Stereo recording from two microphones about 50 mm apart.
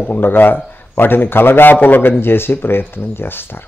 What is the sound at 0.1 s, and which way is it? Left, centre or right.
A man's voice, left.